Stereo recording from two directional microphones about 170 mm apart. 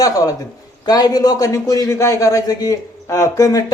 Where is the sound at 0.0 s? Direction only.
20° left (ahead or behind).